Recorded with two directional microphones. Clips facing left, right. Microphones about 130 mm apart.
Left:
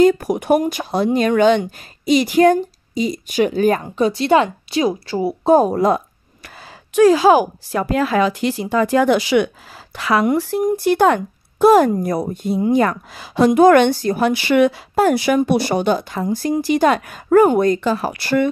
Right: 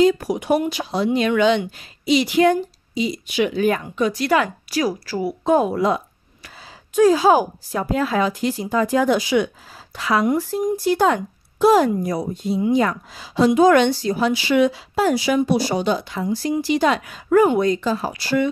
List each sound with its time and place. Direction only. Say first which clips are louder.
0.0 s speech: left 3 dB; 50° left (ahead or behind)
7.0 s a woman's voice: left 3 dB; 75° left (ahead or behind); by 18.5 s 60° left (ahead or behind)